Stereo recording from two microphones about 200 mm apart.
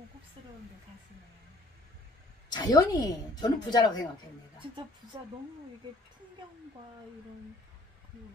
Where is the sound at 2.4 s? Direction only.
20° left (ahead or behind).